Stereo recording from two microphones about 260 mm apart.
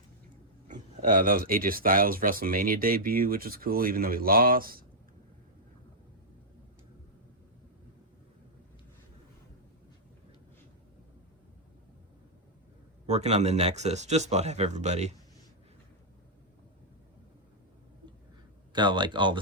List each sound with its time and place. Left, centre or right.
0.7 s speech: right
13.1 s speech: right
18.7 s speech: centre